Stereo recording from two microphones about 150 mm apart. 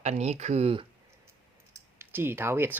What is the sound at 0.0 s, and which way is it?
Speech, 45° right (ahead or behind).